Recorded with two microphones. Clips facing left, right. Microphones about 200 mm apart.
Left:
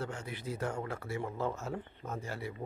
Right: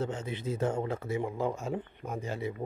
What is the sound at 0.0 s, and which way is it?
Speech, 20° right (ahead or behind).